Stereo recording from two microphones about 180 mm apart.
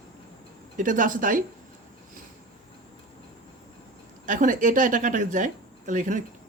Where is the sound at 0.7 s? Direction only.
45° right (ahead or behind).